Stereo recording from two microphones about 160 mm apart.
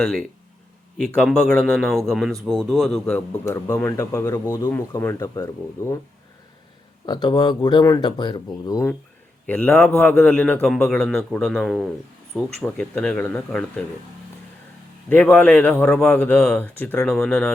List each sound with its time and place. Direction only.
0.0 s a man's voice: centre (ahead or behind)
3.4 s speech: 15° left (ahead or behind)
7.0 s speech: 25° left (ahead or behind)
9.5 s a man's voice: 10° left (ahead or behind)
15.1 s speech: 10° left (ahead or behind)